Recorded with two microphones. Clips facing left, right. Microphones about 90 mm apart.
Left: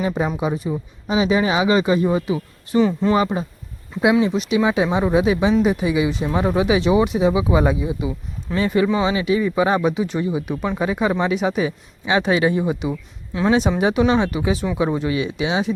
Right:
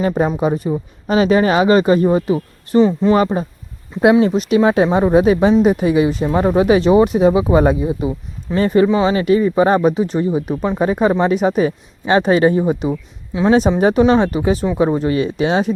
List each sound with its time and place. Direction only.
0.3 s speech: 45° right (ahead or behind)
3.0 s speech: 20° right (ahead or behind)
4.0 s speech: 45° right (ahead or behind)